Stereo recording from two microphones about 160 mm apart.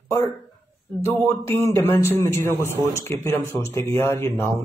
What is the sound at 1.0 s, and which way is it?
Speech, 15° left (ahead or behind).